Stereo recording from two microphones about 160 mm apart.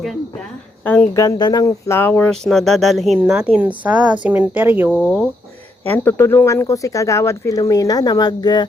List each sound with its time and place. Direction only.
0.9 s speech: 10° left (ahead or behind)
1.1 s a woman's voice: 20° left (ahead or behind); by 4.9 s 10° right (ahead or behind)
5.0 s speech: centre (ahead or behind)
5.8 s speech: 15° left (ahead or behind)